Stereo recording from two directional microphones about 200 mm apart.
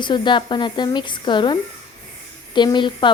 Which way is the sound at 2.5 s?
20° left (ahead or behind).